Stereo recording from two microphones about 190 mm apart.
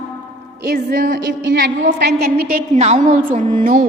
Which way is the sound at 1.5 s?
60° right (ahead or behind).